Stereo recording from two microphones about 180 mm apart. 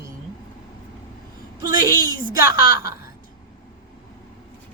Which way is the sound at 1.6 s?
20° right (ahead or behind).